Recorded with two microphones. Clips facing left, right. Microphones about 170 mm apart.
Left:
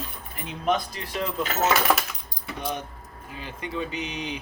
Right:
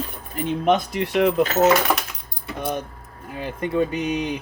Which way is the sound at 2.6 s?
55° right (ahead or behind).